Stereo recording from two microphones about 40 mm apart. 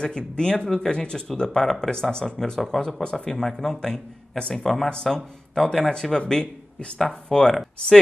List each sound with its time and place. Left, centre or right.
0.0 s speech: centre